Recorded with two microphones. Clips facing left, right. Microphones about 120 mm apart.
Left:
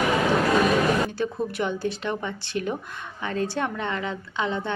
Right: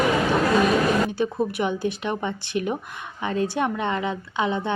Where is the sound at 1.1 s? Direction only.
15° right (ahead or behind).